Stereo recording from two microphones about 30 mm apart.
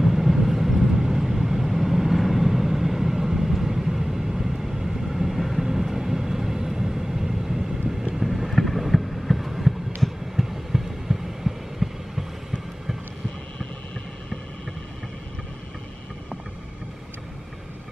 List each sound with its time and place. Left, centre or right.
0.0 s vehicle: centre
8.5 s a sound: centre
10.3 s heart sounds: centre